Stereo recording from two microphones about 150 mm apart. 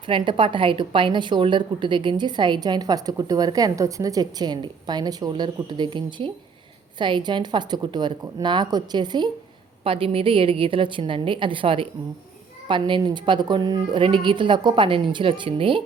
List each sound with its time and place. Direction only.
0.0 s a woman's voice: 35° right (ahead or behind)